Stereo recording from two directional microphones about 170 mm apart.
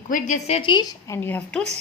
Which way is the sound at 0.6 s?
25° left (ahead or behind).